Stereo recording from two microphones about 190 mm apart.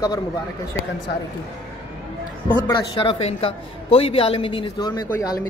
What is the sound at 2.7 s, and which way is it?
A man's voice, 25° left (ahead or behind).